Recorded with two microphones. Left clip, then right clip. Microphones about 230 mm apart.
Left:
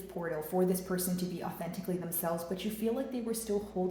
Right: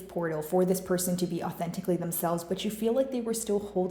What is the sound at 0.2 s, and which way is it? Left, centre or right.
Speech, right.